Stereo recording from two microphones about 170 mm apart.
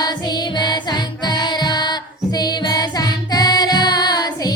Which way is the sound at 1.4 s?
25° left (ahead or behind).